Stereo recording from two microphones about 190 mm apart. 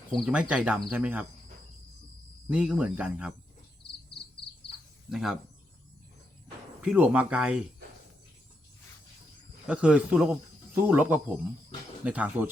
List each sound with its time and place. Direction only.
0.1 s speech: 5° right (ahead or behind)
2.5 s speech: 5° right (ahead or behind)
5.0 s speech: centre (ahead or behind)
6.8 s speech: 5° right (ahead or behind)
9.6 s speech: 5° right (ahead or behind)